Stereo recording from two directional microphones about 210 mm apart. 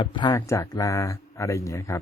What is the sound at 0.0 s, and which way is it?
A man's voice, 20° left (ahead or behind).